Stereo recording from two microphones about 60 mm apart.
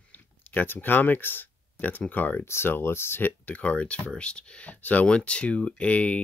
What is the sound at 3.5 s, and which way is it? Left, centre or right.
Speech, left.